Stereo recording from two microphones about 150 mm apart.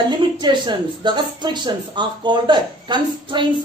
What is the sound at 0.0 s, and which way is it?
Speech, 30° right (ahead or behind).